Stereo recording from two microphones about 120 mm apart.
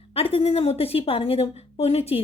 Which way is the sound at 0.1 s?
55° left (ahead or behind).